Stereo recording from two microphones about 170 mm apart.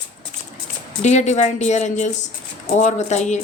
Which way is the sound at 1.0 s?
45° left (ahead or behind).